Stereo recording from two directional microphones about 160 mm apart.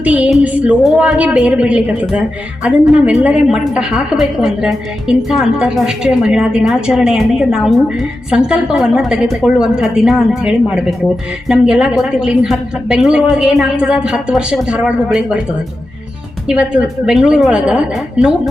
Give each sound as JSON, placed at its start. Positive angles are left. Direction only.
{"t": 0.0, "sound": "a woman's voice", "side_deg": -10}
{"t": 16.5, "sound": "a woman's voice", "side_deg": -5}